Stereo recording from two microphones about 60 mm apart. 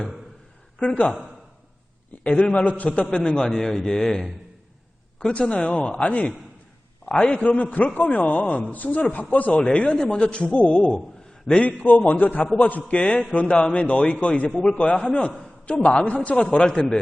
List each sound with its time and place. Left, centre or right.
0.8 s a man's voice: centre
2.2 s a man's voice: left
7.0 s a sound: centre
7.4 s a man's voice: left
9.5 s a man's voice: centre; by 12.8 s left
12.9 s a man's voice: centre